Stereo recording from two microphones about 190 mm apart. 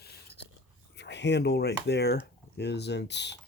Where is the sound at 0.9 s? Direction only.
65° left (ahead or behind).